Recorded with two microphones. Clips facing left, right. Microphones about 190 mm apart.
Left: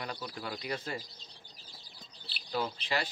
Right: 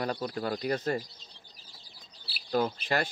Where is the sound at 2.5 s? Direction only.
50° right (ahead or behind).